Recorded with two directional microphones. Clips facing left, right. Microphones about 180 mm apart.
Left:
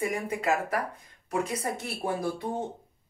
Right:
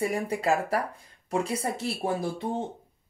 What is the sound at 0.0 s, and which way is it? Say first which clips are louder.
Speech: right 2 dB; 35° right (ahead or behind).